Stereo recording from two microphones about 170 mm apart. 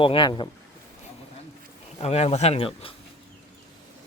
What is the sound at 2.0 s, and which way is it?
Speech, 40° left (ahead or behind).